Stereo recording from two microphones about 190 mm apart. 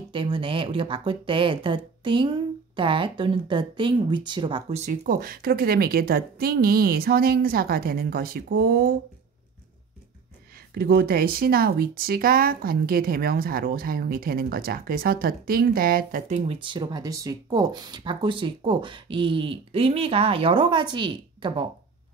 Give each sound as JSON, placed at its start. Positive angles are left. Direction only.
{"t": 0.1, "sound": "speech", "side_deg": -25}
{"t": 10.7, "sound": "speech", "side_deg": -55}
{"t": 16.5, "sound": "speech", "side_deg": -25}